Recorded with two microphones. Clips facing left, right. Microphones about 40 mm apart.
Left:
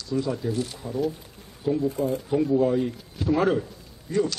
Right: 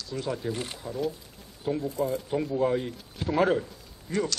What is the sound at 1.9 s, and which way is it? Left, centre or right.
Speech, left.